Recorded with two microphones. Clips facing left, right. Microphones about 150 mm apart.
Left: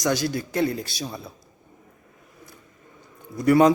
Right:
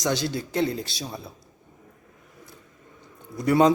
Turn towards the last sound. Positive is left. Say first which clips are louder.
# left 2 dB
turn(degrees=-20)  # may be behind; listen again after turning